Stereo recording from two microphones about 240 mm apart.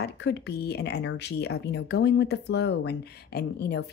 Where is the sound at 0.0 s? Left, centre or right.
Left.